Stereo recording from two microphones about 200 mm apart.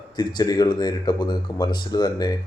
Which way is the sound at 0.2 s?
20° left (ahead or behind).